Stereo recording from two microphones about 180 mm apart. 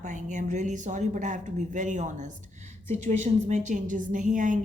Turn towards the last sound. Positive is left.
turn(degrees=-45)  # may be behind; listen again after turning